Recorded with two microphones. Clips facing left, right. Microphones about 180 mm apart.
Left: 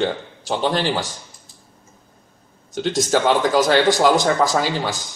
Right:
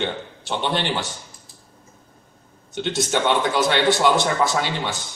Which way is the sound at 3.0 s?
40° left (ahead or behind).